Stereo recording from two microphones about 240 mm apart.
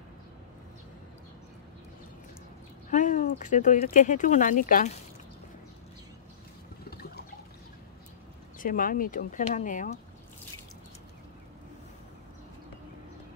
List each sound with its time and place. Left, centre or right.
2.9 s speech: left
6.9 s liquid: left
8.5 s speech: left